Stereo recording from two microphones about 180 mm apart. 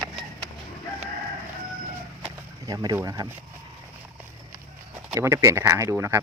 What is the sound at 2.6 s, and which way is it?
Speech, 20° right (ahead or behind).